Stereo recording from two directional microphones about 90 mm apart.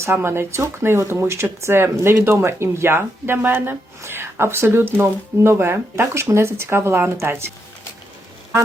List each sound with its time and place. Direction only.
0.0 s speech: 30° right (ahead or behind)